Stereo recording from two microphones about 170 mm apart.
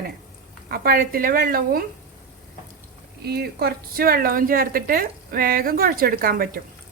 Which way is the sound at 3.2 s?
70° right (ahead or behind).